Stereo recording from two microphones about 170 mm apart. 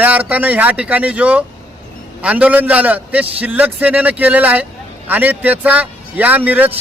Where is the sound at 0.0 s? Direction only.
10° right (ahead or behind).